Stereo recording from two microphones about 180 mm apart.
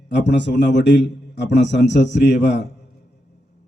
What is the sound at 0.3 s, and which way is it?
A man's voice, 75° left (ahead or behind).